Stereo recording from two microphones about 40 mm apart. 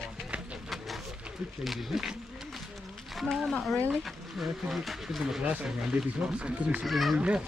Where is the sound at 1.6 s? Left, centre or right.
Centre.